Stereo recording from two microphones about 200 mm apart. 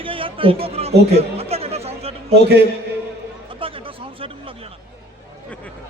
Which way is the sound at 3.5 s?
25° right (ahead or behind).